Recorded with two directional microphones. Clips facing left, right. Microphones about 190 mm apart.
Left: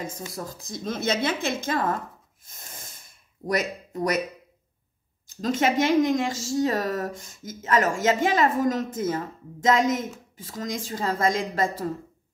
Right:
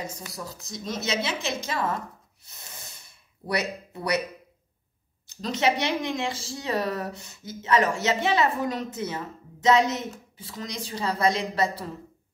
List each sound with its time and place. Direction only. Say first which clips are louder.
0.3 s a woman's voice: left 3 dB; 50° left (ahead or behind)
2.6 s a sound: left 1 dB; 45° left (ahead or behind)
5.4 s a woman's voice: left 3 dB; 45° left (ahead or behind)